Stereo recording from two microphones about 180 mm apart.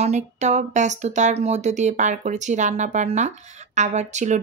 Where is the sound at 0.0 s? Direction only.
40° right (ahead or behind).